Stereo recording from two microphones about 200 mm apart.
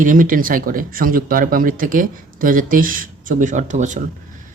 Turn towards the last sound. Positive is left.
turn(degrees=-35)  # may be behind; listen again after turning